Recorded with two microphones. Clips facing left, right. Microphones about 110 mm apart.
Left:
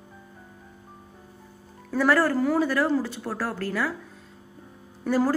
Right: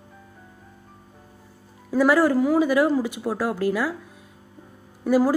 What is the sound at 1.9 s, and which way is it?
Speech, 10° right (ahead or behind).